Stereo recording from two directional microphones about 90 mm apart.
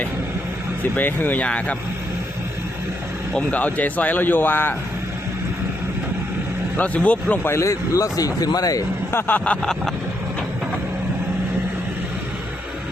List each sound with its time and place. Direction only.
0.9 s speech: 20° left (ahead or behind)
3.3 s speech: 15° left (ahead or behind)
6.7 s speech: 15° left (ahead or behind)
7.5 s speech: 35° left (ahead or behind)
9.1 s speech: 20° left (ahead or behind); by 9.9 s 5° left (ahead or behind)